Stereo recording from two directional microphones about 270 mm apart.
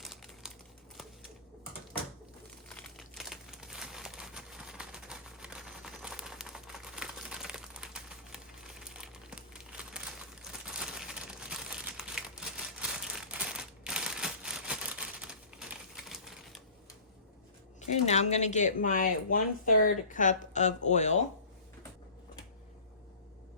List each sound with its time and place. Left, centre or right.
0.0 s crumpling: centre
2.6 s crumpling: centre
13.0 s a sound: centre
16.0 s typing: centre
17.7 s speech: left